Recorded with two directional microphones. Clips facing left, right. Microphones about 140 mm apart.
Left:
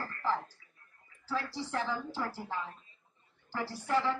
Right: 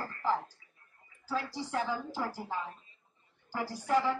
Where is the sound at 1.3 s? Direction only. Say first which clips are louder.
Right 1 dB; 10° right (ahead or behind).